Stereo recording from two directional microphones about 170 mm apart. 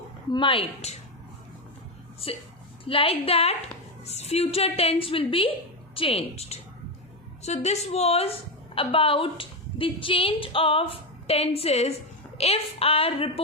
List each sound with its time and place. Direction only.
0.3 s a woman's voice: 30° left (ahead or behind)
2.8 s a woman's voice: 30° left (ahead or behind)